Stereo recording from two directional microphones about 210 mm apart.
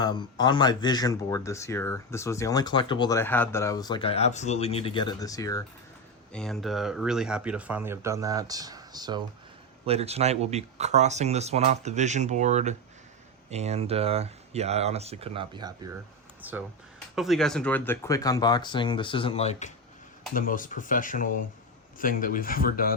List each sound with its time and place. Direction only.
0.0 s speech: 20° left (ahead or behind)
6.3 s speech: centre (ahead or behind); by 9.2 s 20° right (ahead or behind)
9.8 s speech: 30° right (ahead or behind)
16.4 s speech: 10° right (ahead or behind); by 23.0 s 45° left (ahead or behind)